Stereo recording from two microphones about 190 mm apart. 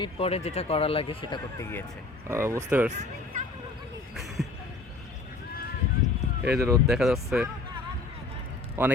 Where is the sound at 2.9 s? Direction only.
40° right (ahead or behind).